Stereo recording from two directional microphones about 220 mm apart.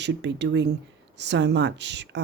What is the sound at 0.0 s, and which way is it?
Speech, 50° right (ahead or behind).